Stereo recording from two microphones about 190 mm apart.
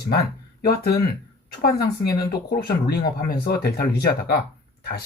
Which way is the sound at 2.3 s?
55° left (ahead or behind).